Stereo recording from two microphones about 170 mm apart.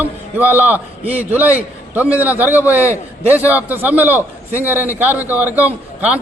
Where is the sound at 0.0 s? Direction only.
10° right (ahead or behind).